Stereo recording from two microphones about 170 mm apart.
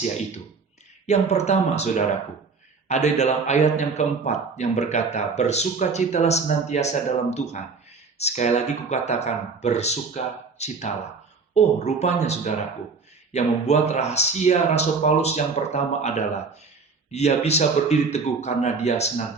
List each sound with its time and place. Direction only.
1.0 s speech: 40° left (ahead or behind)